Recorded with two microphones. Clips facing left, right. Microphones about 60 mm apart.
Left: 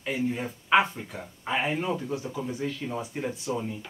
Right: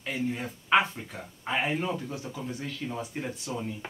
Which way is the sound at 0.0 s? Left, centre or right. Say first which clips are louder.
Left 3 dB; centre.